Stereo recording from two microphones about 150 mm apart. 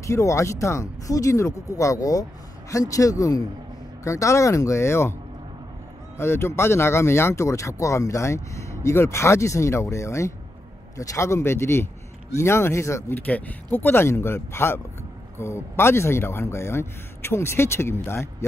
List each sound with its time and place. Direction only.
0.0 s speech: 20° left (ahead or behind)
6.1 s speech: 15° left (ahead or behind)